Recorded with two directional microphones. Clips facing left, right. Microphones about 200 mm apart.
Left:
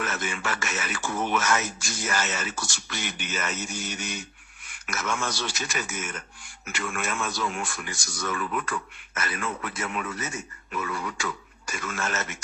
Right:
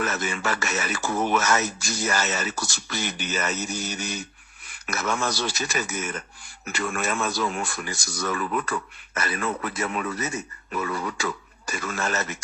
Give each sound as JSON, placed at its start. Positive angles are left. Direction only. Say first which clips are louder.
{"t": 0.0, "sound": "speech", "louder": "right 4 dB", "side_deg": -40}